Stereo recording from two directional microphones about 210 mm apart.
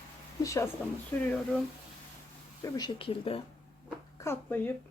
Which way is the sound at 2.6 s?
20° left (ahead or behind).